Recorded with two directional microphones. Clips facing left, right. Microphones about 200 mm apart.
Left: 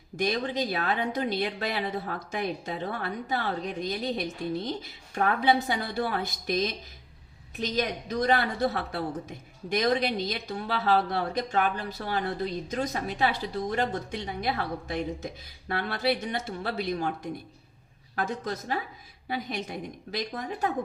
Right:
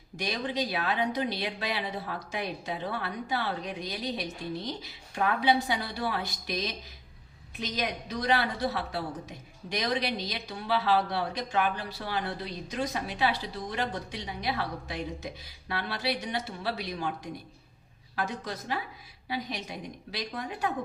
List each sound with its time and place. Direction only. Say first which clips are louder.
0.2 s a woman's voice: left 4 dB; 50° left (ahead or behind)